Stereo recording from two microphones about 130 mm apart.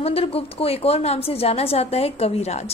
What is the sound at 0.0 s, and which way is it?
A woman's voice, 50° left (ahead or behind).